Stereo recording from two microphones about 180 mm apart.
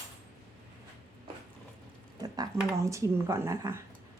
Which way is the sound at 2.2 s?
20° right (ahead or behind).